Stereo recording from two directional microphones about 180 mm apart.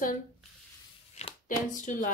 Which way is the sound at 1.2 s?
35° left (ahead or behind).